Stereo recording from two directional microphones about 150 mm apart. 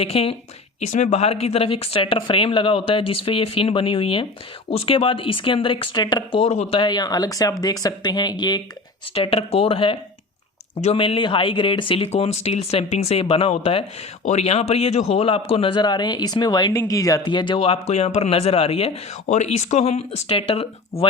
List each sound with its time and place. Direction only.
0.0 s speech: 40° left (ahead or behind)
9.1 s speech: 40° left (ahead or behind)
19.3 s speech: 50° left (ahead or behind)